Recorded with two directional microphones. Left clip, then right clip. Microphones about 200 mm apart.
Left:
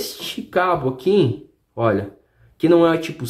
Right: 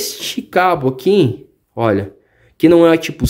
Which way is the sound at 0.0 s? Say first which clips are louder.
Right 5 dB; 35° right (ahead or behind).